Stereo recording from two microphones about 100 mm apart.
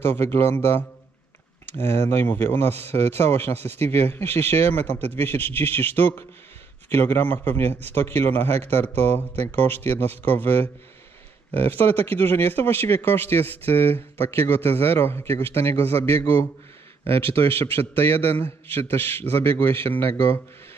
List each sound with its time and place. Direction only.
0.0 s speech: 25° left (ahead or behind)
1.8 s speech: 25° left (ahead or behind)
3.0 s speech: 90° right
3.3 s speech: 25° left (ahead or behind)